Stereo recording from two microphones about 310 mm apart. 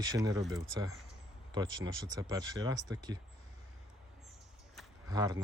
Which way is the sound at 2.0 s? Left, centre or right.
Centre.